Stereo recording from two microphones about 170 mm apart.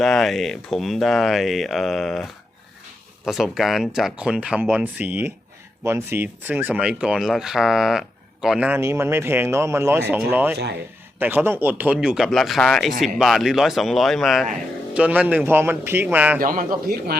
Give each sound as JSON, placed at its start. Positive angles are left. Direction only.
{"t": 0.0, "sound": "speech", "side_deg": 0}
{"t": 16.4, "sound": "speech", "side_deg": -55}